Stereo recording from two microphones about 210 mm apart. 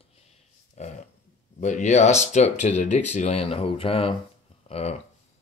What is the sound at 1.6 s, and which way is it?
Speech, 35° left (ahead or behind).